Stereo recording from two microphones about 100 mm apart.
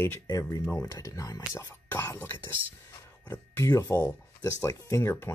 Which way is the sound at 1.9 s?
25° left (ahead or behind).